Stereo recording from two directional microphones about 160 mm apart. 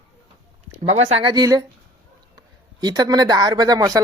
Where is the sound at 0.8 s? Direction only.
35° right (ahead or behind).